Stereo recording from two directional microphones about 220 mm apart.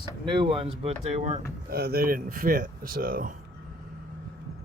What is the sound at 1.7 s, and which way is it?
Speech, 45° right (ahead or behind).